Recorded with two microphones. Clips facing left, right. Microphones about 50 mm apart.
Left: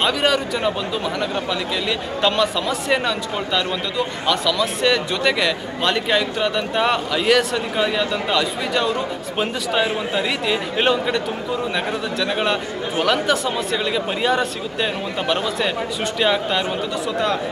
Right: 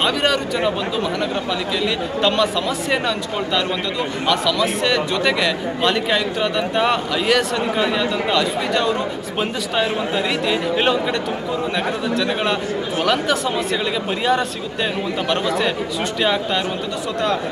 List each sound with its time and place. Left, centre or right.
0.0 s a man's voice: centre
2.2 s a man's voice: centre
12.9 s a man's voice: centre